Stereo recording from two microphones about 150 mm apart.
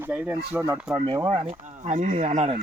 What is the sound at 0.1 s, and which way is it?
Speech, 10° right (ahead or behind).